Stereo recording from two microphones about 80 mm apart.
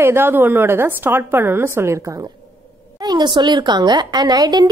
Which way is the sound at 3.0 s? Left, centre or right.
Right.